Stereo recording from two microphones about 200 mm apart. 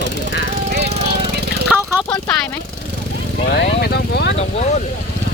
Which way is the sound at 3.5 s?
55° left (ahead or behind).